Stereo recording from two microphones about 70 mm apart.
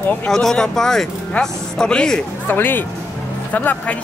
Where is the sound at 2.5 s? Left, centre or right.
Left.